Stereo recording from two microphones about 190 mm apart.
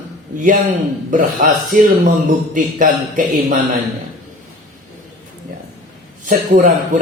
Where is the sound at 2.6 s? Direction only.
45° right (ahead or behind).